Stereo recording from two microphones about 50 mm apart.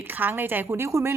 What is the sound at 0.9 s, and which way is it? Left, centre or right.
Speech, right.